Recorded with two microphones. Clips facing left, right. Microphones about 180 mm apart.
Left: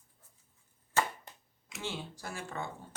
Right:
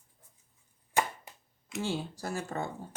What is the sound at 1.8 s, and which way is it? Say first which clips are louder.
Speech: right 6 dB; 40° right (ahead or behind).